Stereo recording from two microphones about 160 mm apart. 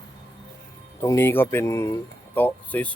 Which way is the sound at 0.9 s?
15° left (ahead or behind).